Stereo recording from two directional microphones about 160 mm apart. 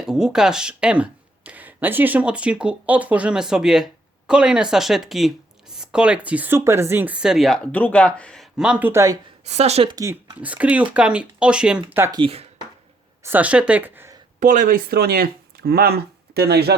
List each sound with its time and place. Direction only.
0.0 s speech: 5° right (ahead or behind)
9.5 s speech: 40° right (ahead or behind)
9.9 s speech: 20° right (ahead or behind)
10.4 s speech: 10° right (ahead or behind)
12.1 s speech: 35° right (ahead or behind)
13.2 s speech: 10° right (ahead or behind)
14.3 s speech: 50° right (ahead or behind); by 16.7 s 90° right